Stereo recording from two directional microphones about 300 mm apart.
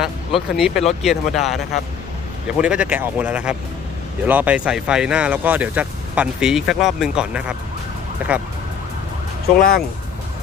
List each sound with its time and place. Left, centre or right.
0.0 s speech: centre
9.6 s speech: left